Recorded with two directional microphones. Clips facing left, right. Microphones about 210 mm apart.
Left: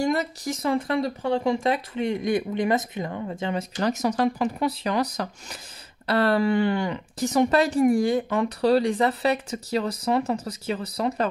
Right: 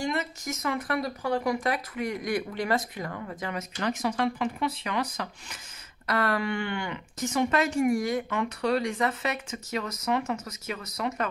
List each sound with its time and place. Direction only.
0.0 s speech: 40° left (ahead or behind)
3.7 s speech: 40° left (ahead or behind)